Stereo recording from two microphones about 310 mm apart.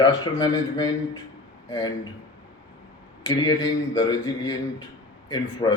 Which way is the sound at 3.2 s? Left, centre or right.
Centre.